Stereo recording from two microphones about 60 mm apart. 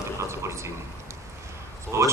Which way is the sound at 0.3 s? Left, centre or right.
Right.